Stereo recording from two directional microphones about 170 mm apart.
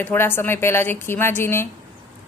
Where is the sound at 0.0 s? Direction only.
10° left (ahead or behind).